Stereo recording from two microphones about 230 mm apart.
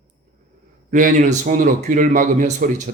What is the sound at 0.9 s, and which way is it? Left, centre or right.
Speech, right.